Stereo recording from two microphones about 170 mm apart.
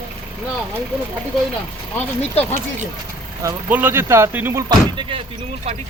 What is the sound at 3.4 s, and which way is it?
Speech, 15° right (ahead or behind).